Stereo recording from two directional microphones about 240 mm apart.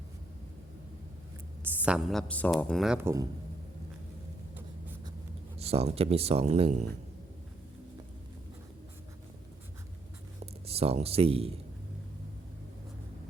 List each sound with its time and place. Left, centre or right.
1.8 s speech: centre
5.5 s speech: right
10.4 s speech: right